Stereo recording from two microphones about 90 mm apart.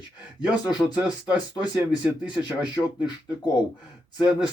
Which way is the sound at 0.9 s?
50° left (ahead or behind).